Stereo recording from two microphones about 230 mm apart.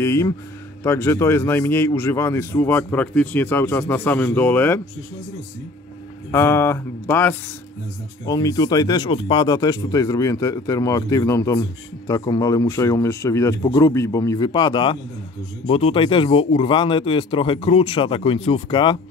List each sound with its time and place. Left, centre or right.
0.0 s a man's voice: centre
6.3 s a man's voice: centre